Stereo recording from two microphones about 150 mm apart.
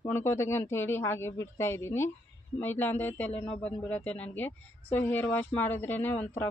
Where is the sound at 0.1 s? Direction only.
15° left (ahead or behind).